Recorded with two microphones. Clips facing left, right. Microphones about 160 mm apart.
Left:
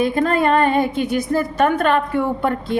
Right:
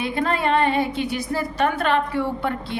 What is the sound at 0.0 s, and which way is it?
A woman's voice, 45° left (ahead or behind).